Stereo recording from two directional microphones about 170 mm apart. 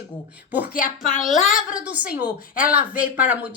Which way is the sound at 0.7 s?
55° left (ahead or behind).